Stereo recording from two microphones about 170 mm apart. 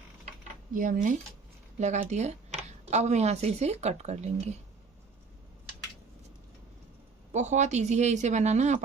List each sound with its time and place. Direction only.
0.7 s speech: 50° right (ahead or behind)
7.3 s speech: 45° right (ahead or behind)